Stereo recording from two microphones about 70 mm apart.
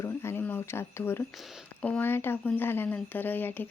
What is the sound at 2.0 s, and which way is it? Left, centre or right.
Speech, left.